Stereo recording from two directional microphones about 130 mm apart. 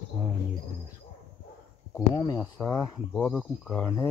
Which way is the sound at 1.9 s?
30° left (ahead or behind).